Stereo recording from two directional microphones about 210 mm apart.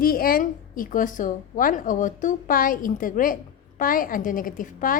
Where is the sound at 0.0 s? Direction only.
45° left (ahead or behind).